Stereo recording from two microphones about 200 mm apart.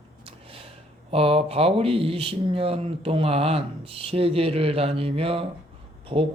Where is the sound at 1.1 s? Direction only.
30° right (ahead or behind).